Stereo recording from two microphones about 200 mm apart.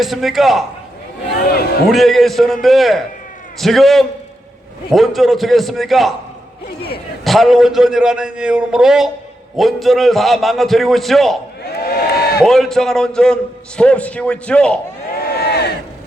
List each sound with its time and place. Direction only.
0.0 s a man's voice: centre (ahead or behind)
1.5 s a man's voice: 50° left (ahead or behind)
1.9 s a man's voice: centre (ahead or behind)
7.3 s a man's voice: centre (ahead or behind)
11.8 s a sound: 50° left (ahead or behind)
12.4 s a man's voice: centre (ahead or behind)
15.1 s crowd: 50° left (ahead or behind)